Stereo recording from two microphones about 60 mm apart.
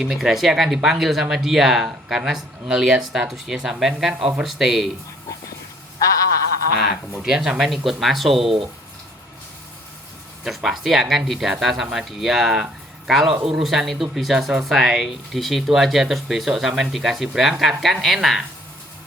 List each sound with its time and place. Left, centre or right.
0.0 s speech: centre
6.0 s a sound: left
7.3 s speech: centre
10.4 s speech: centre